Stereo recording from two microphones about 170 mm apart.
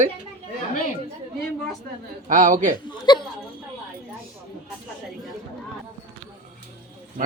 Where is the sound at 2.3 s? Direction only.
50° right (ahead or behind).